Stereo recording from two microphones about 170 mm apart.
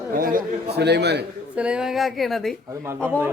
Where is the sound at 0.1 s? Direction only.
55° right (ahead or behind); by 1.2 s 80° right.